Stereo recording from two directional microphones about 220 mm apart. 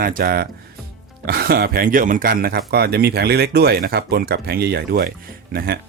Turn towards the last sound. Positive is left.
turn(degrees=-45)  # may be behind; listen again after turning